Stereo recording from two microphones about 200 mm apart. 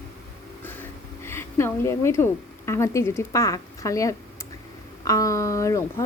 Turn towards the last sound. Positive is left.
turn(degrees=15)  # may be behind; listen again after turning